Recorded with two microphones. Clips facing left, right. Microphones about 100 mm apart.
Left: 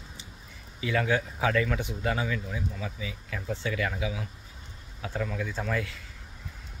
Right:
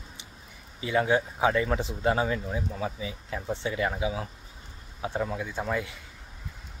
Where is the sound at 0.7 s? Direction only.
25° right (ahead or behind).